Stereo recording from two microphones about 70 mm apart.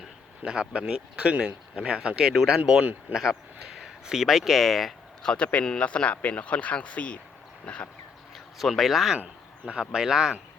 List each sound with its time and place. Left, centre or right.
0.4 s speech: centre
7.6 s a sound: centre
8.5 s speech: centre
9.1 s speech: centre